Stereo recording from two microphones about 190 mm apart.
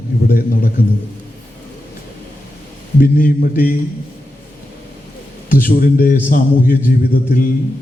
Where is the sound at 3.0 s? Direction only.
45° left (ahead or behind).